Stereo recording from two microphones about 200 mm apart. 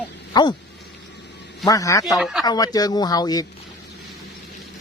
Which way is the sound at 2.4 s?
20° left (ahead or behind).